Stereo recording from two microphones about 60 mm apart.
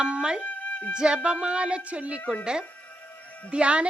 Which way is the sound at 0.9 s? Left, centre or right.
Centre.